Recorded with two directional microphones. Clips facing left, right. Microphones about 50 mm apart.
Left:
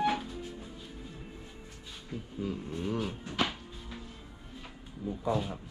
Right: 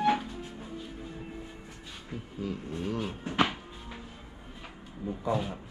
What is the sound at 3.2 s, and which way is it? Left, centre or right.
Cupboard open or close, right.